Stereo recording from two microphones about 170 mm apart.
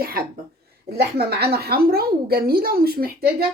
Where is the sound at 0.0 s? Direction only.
65° right (ahead or behind).